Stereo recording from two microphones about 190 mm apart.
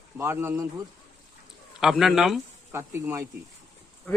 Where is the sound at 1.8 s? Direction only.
Centre (ahead or behind).